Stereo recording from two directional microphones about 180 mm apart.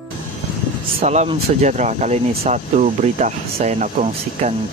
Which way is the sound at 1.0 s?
40° right (ahead or behind).